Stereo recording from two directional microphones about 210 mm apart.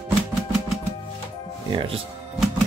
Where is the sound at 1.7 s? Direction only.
25° right (ahead or behind).